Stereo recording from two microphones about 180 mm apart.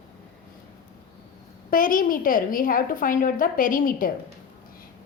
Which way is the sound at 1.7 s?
50° left (ahead or behind).